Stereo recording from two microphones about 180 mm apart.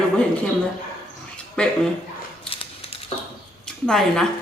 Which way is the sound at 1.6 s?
5° left (ahead or behind).